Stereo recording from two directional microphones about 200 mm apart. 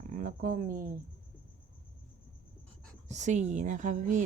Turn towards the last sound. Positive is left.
turn(degrees=-40)  # may be behind; listen again after turning